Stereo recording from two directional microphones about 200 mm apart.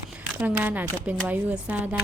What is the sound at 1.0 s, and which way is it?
Speech, 5° left (ahead or behind).